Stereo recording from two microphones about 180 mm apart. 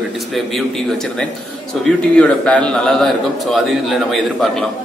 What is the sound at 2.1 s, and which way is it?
A man's voice, 5° left (ahead or behind).